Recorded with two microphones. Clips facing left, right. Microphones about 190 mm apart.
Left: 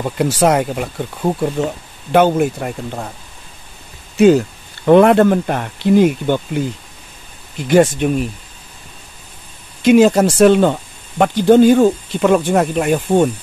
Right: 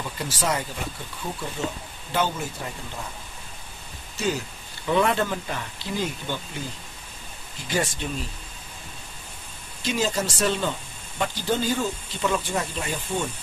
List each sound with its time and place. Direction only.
0.0 s speech: 60° left (ahead or behind)
4.8 s speech: 60° left (ahead or behind)
9.8 s speech: 60° left (ahead or behind)